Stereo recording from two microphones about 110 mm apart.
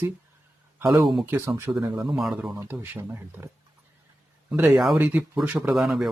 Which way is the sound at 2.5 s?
20° right (ahead or behind).